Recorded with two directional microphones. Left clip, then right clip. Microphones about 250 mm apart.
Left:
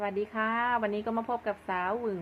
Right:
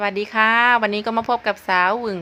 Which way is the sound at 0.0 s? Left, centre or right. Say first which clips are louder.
Right 13 dB; right.